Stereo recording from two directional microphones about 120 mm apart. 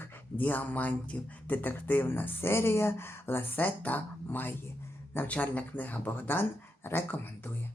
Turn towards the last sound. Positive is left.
turn(degrees=20)  # may be behind; listen again after turning